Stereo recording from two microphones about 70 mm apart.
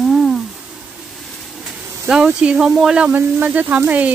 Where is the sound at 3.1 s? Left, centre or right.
Right.